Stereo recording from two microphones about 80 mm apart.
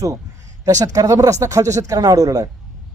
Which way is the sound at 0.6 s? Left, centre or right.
Right.